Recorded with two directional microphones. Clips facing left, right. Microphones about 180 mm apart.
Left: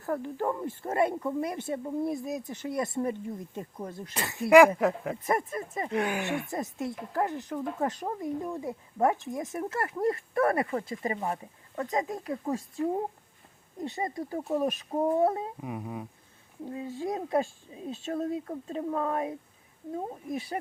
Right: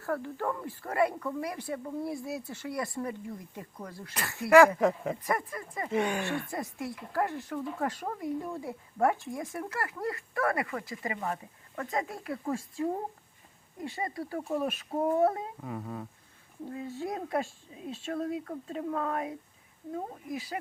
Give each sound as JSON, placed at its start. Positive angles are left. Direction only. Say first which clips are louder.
{"t": 0.0, "sound": "speech", "louder": "left 2 dB", "side_deg": 20}
{"t": 5.2, "sound": "speech", "louder": "left 3 dB", "side_deg": 25}
{"t": 5.9, "sound": "speech", "louder": "right 1 dB", "side_deg": 0}
{"t": 6.5, "sound": "speech", "louder": "left 3 dB", "side_deg": 20}